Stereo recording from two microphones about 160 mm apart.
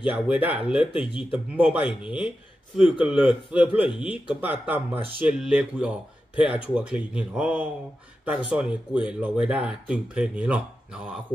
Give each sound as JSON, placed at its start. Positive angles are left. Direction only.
{"t": 0.0, "sound": "speech", "side_deg": -10}
{"t": 0.9, "sound": "speech", "side_deg": 30}
{"t": 1.5, "sound": "speech", "side_deg": -5}
{"t": 3.8, "sound": "speech", "side_deg": 35}
{"t": 4.3, "sound": "speech", "side_deg": -10}